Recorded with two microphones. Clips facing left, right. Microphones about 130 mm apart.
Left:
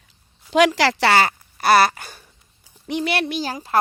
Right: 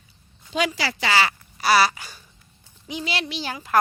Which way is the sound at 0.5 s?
90° left.